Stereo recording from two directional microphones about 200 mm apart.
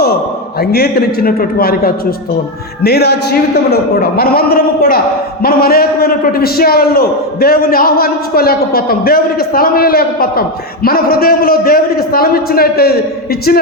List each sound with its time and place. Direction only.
0.6 s a man's voice: 50° left (ahead or behind)